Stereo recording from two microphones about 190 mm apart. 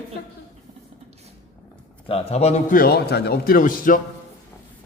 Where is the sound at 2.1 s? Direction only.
35° left (ahead or behind).